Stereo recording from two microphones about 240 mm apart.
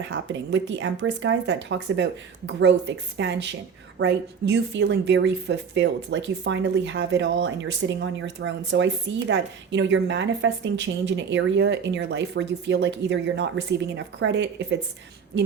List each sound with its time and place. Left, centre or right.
0.1 s speech: right